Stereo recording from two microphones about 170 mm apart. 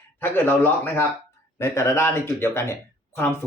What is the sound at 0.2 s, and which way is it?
Speech, 10° left (ahead or behind).